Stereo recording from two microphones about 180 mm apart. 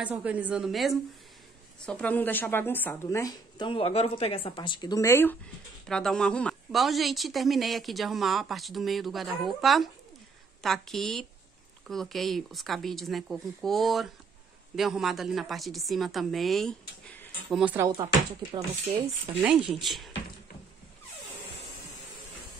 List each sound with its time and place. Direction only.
0.0 s speech: 5° right (ahead or behind)
17.6 s speech: 10° right (ahead or behind)
19.2 s speech: 5° right (ahead or behind)